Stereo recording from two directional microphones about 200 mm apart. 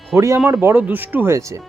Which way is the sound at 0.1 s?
15° right (ahead or behind).